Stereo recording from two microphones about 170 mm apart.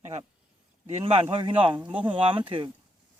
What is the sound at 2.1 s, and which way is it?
Speech, 30° right (ahead or behind).